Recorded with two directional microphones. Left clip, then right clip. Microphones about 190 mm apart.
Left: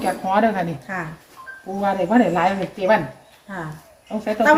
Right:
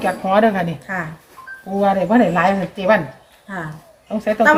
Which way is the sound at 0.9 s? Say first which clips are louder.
Right 3 dB; 10° right (ahead or behind).